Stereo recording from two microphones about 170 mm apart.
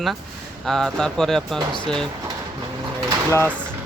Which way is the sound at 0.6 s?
Centre (ahead or behind).